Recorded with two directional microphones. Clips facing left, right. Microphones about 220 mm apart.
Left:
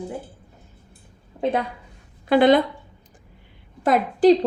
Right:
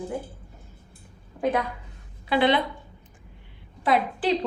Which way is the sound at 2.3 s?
45° left (ahead or behind).